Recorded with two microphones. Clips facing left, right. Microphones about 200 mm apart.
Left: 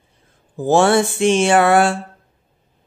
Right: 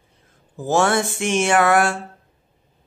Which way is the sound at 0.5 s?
30° left (ahead or behind).